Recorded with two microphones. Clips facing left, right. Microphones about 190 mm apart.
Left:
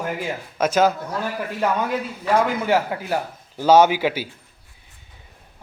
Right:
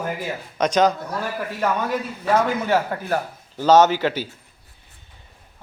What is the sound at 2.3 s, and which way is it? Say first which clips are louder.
A man's voice: even; 10° left (ahead or behind).